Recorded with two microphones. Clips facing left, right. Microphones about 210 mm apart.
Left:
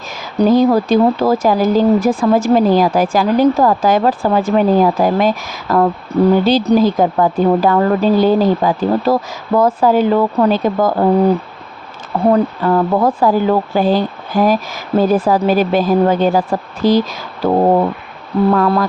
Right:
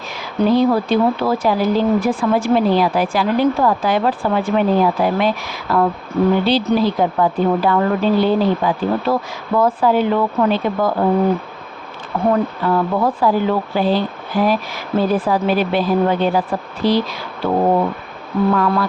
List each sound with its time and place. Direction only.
0.3 s speech: 40° left (ahead or behind)
12.3 s speech: 45° left (ahead or behind)